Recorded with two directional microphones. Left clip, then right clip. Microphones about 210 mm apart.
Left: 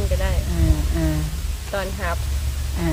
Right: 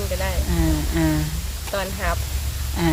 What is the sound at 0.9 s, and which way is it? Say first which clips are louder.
Speech: right 4 dB; 40° right (ahead or behind).